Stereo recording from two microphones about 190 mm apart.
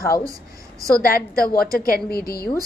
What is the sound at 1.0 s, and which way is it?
A woman's voice, 50° left (ahead or behind).